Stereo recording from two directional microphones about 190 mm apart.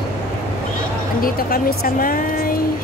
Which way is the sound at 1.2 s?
50° left (ahead or behind).